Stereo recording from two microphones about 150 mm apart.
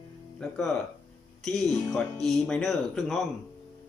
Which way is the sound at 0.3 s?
5° left (ahead or behind).